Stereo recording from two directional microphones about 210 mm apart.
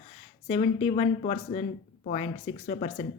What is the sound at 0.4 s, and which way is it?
Speech, 30° left (ahead or behind).